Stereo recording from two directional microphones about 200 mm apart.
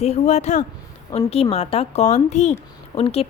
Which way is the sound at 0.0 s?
35° left (ahead or behind).